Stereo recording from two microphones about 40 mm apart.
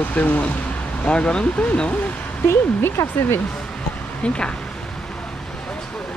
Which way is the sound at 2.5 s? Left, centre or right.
Left.